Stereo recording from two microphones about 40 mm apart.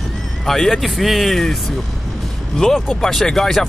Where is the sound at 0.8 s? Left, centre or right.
Centre.